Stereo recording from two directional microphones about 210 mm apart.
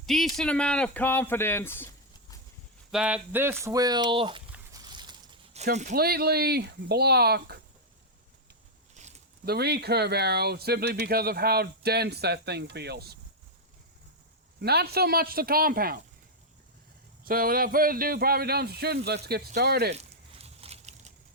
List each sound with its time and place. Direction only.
0.0 s speech: centre (ahead or behind)
2.9 s speech: 5° right (ahead or behind); by 4.4 s 25° right (ahead or behind)
4.5 s a sound: 20° right (ahead or behind)
5.9 s speech: 50° right (ahead or behind)
9.0 s a sound: 35° right (ahead or behind)
9.5 s speech: 50° right (ahead or behind)
14.6 s speech: 50° right (ahead or behind)
17.2 s speech: 45° right (ahead or behind)
20.0 s a sound: 30° right (ahead or behind)